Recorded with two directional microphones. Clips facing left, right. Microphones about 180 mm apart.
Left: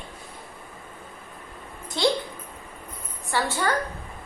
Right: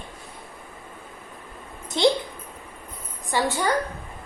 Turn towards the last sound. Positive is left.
turn(degrees=-15)  # may be behind; listen again after turning